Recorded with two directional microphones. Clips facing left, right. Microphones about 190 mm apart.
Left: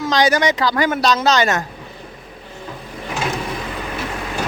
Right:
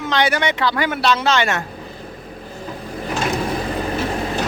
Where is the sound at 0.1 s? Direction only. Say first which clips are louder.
Left 3 dB; 40° left (ahead or behind).